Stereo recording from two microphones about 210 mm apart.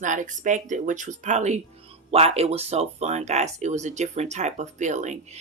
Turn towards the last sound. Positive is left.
turn(degrees=-35)  # may be behind; listen again after turning